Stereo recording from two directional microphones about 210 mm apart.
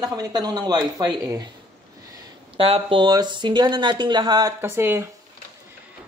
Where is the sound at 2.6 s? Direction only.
25° right (ahead or behind); by 5.0 s 10° right (ahead or behind).